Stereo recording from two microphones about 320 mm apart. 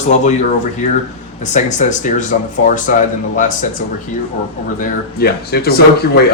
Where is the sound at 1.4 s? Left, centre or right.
Left.